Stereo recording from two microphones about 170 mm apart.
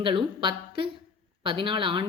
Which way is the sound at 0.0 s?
30° right (ahead or behind).